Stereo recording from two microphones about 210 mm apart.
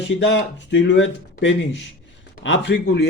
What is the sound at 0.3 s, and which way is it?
A man's voice, 55° left (ahead or behind).